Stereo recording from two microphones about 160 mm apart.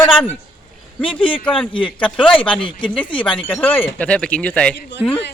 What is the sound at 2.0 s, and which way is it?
Speech, 10° left (ahead or behind).